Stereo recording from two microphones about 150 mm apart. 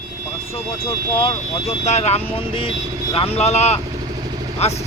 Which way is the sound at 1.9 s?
45° left (ahead or behind).